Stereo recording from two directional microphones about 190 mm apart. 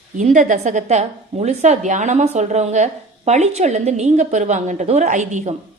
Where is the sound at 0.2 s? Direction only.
40° right (ahead or behind).